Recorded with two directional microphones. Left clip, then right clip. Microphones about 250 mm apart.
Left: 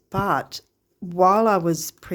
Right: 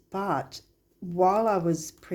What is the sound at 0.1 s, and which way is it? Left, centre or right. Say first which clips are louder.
Speech: left 6 dB; left.